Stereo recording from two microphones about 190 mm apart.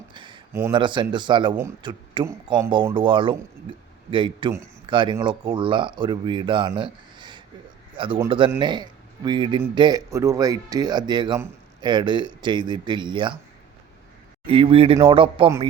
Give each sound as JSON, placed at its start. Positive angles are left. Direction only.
{"t": 0.1, "sound": "a sound", "side_deg": -25}
{"t": 0.7, "sound": "a man's voice", "side_deg": -25}
{"t": 14.4, "sound": "speech", "side_deg": -30}